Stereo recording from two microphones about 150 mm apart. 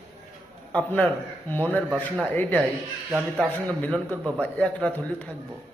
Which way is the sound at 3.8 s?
5° left (ahead or behind).